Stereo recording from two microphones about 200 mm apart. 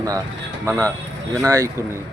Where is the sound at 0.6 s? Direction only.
15° right (ahead or behind).